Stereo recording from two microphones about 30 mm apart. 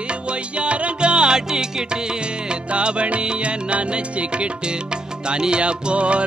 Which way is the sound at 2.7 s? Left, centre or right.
Right.